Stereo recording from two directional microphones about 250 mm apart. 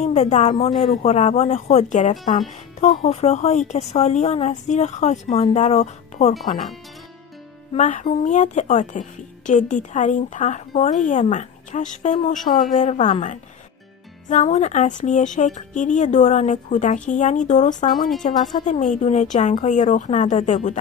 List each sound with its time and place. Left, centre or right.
0.0 s speech: left
7.7 s speech: left